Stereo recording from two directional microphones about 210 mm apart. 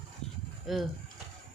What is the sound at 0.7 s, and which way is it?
Speech, centre (ahead or behind).